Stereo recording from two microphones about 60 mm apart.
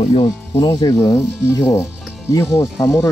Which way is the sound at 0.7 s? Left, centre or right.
Left.